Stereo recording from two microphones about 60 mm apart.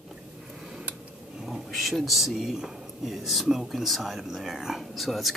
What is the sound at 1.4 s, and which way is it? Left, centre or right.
Speech, centre.